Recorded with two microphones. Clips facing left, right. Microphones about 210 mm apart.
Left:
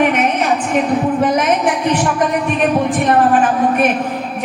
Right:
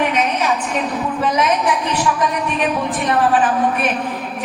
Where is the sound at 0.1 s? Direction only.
55° left (ahead or behind).